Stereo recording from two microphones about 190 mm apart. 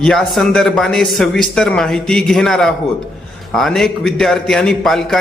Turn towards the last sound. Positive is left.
turn(degrees=0)  # may be behind; listen again after turning